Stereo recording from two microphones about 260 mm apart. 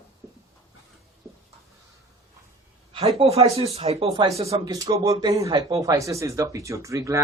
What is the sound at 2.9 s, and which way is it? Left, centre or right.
Speech, right.